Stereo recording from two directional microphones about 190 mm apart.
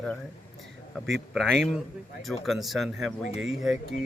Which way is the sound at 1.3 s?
Centre (ahead or behind).